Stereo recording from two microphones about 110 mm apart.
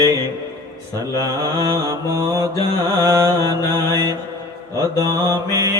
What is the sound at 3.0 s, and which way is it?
Music, 30° right (ahead or behind).